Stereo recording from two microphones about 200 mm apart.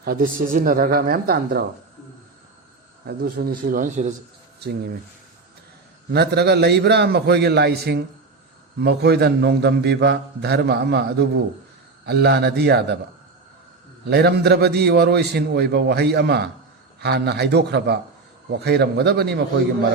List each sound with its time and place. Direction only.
0.0 s speech: 45° right (ahead or behind)
3.1 s speech: 50° right (ahead or behind)
4.6 s speech: 55° right (ahead or behind)
6.1 s a man's voice: 55° right (ahead or behind)
14.0 s a man's voice: 55° right (ahead or behind)